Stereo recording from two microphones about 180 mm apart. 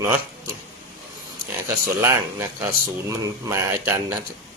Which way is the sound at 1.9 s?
15° right (ahead or behind).